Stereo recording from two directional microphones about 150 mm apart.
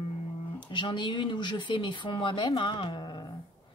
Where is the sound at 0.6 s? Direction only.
30° left (ahead or behind).